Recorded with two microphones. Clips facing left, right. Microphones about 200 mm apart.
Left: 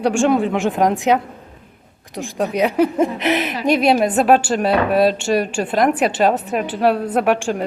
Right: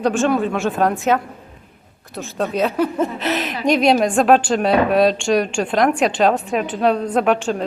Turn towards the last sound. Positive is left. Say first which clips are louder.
# even
turn(degrees=10)  # may be behind; listen again after turning